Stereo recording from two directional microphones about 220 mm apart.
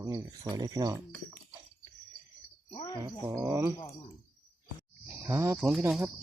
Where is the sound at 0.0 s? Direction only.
15° right (ahead or behind).